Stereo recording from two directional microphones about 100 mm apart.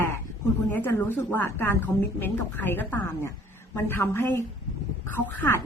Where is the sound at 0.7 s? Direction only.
20° left (ahead or behind).